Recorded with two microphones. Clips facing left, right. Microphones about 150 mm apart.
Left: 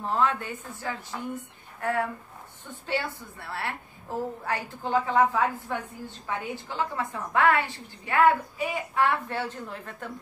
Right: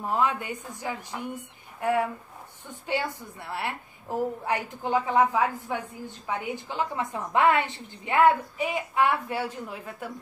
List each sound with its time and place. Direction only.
0.0 s a woman's voice: 10° right (ahead or behind)